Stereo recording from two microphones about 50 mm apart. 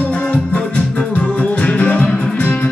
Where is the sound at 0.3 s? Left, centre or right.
Left.